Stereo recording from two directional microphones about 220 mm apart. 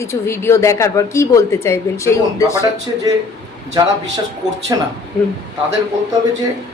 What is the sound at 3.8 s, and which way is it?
A man's voice, 15° right (ahead or behind).